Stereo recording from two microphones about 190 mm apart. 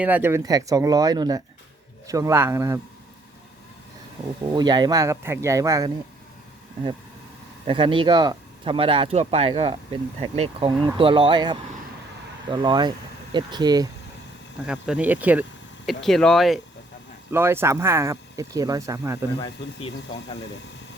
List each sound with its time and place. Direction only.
0.0 s speech: 10° right (ahead or behind)
4.4 s speech: 20° right (ahead or behind)
7.7 s speech: 25° right (ahead or behind)
14.6 s speech: 5° right (ahead or behind)
17.3 s speech: 10° right (ahead or behind)